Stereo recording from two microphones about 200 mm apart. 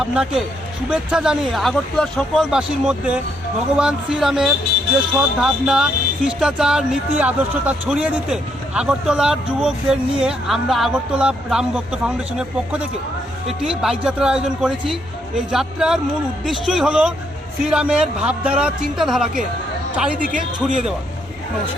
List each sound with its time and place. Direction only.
0.0 s speech: 5° right (ahead or behind)
20.2 s speech: 40° right (ahead or behind)